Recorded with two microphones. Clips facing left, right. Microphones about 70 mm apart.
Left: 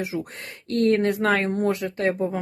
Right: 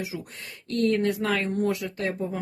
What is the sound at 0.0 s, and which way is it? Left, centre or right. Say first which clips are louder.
Speech: left 5 dB; left.